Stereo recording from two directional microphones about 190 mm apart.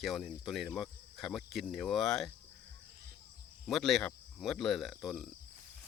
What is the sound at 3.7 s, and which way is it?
Speech, centre (ahead or behind).